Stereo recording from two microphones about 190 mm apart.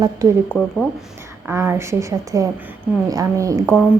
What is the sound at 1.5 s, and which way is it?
A woman's voice, 15° right (ahead or behind).